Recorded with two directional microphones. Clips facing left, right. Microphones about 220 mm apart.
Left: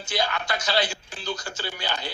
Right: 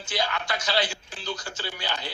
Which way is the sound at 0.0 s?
45° left (ahead or behind).